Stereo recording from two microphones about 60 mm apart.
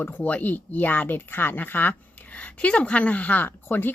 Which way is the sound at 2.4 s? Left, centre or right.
Left.